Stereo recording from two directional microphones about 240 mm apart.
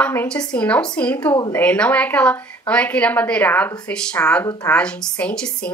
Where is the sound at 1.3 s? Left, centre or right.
Centre.